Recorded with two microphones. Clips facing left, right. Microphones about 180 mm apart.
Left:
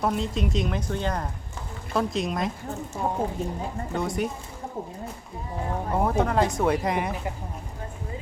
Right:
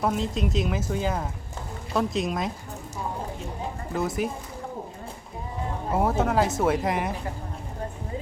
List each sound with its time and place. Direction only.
0.0 s speech: centre (ahead or behind)
3.0 s a woman's voice: 50° left (ahead or behind)
3.9 s speech: centre (ahead or behind)
5.9 s speech: 5° right (ahead or behind)